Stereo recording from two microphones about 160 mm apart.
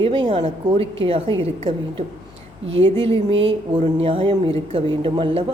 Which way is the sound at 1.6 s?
45° right (ahead or behind).